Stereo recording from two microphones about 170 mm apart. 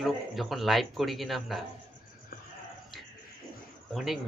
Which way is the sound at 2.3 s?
55° left (ahead or behind).